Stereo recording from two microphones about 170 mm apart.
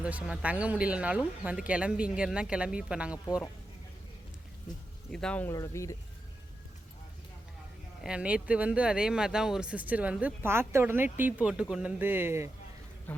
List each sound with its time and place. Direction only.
0.0 s speech: 5° right (ahead or behind)
5.1 s speech: 5° left (ahead or behind)
5.5 s speech: 20° left (ahead or behind)
8.0 s speech: 5° right (ahead or behind)
13.1 s speech: 10° left (ahead or behind)